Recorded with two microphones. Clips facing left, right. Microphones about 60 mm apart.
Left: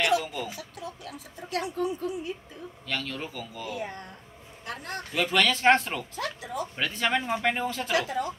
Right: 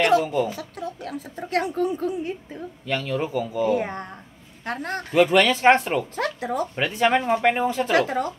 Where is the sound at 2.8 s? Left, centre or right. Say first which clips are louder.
Right 8 dB; centre.